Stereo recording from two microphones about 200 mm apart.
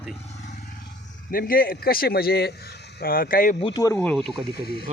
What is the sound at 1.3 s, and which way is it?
A man's voice, 45° left (ahead or behind).